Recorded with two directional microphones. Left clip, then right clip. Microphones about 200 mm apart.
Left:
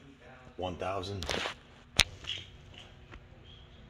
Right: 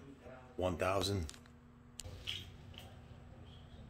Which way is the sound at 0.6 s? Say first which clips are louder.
Even; 10° right (ahead or behind).